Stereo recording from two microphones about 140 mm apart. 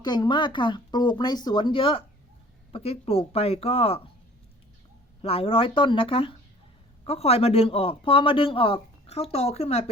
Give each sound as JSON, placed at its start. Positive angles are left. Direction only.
{"t": 0.0, "sound": "a man's voice", "side_deg": 30}
{"t": 5.2, "sound": "a man's voice", "side_deg": 40}